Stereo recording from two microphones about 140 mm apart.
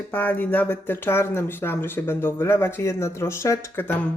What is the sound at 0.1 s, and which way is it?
Speech, 10° left (ahead or behind).